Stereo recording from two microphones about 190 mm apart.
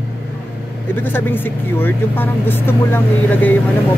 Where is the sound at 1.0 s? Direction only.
10° left (ahead or behind).